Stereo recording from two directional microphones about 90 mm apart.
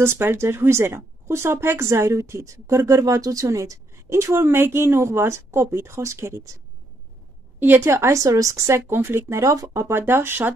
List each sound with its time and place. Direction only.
0.0 s speech: 25° right (ahead or behind)
7.6 s speech: 25° right (ahead or behind)